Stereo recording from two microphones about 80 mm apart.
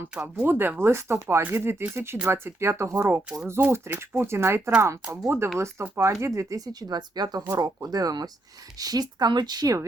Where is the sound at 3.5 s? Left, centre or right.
Right.